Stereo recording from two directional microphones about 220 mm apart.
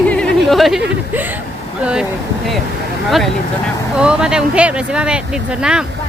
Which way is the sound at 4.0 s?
5° right (ahead or behind).